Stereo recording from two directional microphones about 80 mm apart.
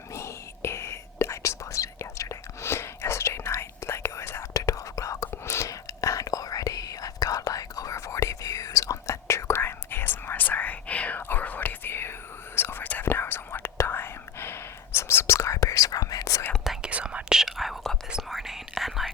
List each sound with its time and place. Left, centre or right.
0.1 s whispering: left
4.6 s whispering: left
16.6 s whispering: centre